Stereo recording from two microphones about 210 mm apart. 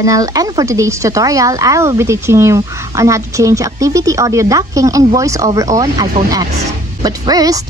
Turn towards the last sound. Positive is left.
turn(degrees=-15)  # may be behind; listen again after turning